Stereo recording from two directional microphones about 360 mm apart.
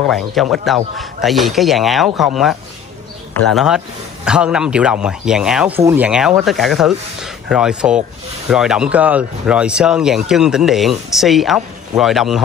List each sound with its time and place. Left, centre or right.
0.1 s speech: centre